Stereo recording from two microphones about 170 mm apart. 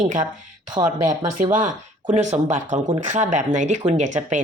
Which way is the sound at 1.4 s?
50° right (ahead or behind).